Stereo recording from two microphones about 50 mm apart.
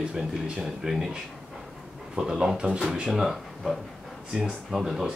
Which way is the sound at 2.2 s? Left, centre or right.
Centre.